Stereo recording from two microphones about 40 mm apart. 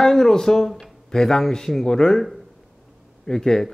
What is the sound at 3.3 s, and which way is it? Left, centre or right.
Speech, centre.